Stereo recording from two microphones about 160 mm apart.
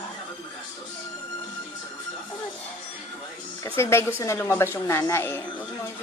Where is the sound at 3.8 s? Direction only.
15° left (ahead or behind).